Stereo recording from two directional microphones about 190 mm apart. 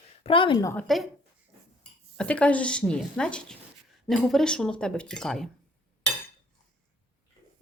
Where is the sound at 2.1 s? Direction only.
5° left (ahead or behind).